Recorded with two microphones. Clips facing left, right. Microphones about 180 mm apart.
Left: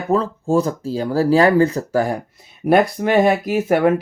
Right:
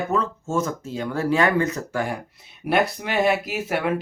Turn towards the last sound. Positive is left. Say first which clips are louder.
# left 9 dB
turn(degrees=45)  # may be behind; listen again after turning